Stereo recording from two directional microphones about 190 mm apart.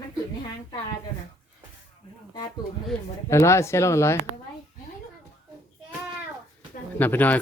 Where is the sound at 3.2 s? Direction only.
15° left (ahead or behind).